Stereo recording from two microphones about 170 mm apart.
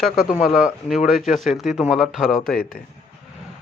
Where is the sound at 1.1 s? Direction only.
50° left (ahead or behind).